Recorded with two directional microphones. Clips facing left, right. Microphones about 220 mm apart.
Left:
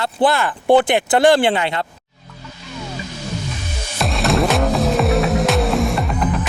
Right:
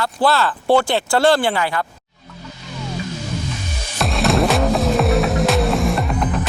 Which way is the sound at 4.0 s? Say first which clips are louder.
Right 1 dB; centre (ahead or behind).